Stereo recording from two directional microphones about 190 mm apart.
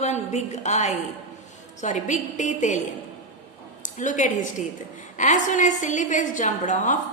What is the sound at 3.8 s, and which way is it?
A woman's voice, 40° left (ahead or behind).